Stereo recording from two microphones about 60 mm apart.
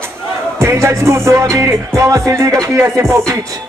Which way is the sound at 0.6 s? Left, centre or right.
Right.